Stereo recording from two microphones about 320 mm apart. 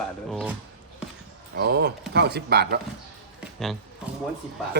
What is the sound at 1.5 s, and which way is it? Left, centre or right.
Speech, right.